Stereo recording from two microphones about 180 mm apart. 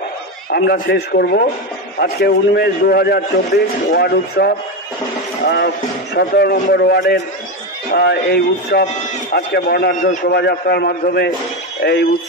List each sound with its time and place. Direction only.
0.5 s a man's voice: 60° left (ahead or behind)
5.4 s speech: 80° left
6.1 s a man's voice: 60° left (ahead or behind)
10.3 s a man's voice: 65° left (ahead or behind)